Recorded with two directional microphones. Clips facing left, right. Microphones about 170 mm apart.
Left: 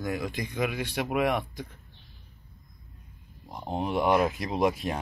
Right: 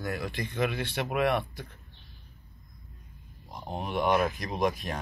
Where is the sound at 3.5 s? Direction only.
25° left (ahead or behind).